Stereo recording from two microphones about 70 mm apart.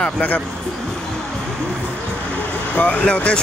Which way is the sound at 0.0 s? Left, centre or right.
Left.